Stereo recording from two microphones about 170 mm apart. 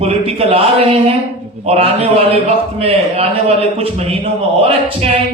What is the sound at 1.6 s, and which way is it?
A man's voice, 35° right (ahead or behind).